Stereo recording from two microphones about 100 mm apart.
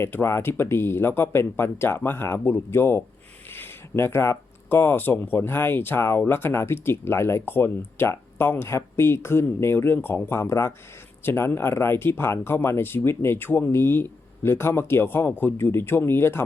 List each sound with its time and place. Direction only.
0.0 s speech: 25° left (ahead or behind)